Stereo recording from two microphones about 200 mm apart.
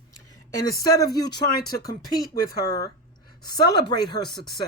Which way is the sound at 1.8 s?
20° left (ahead or behind).